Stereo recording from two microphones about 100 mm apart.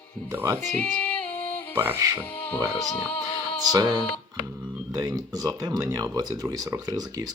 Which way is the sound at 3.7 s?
45° right (ahead or behind).